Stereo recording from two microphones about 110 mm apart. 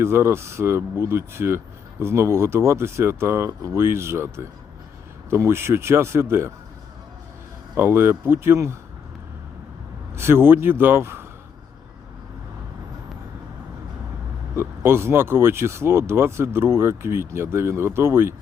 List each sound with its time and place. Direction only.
0.0 s speech: 25° right (ahead or behind)
7.8 s speech: 20° right (ahead or behind)
10.2 s speech: 25° right (ahead or behind)
14.5 s speech: 25° right (ahead or behind)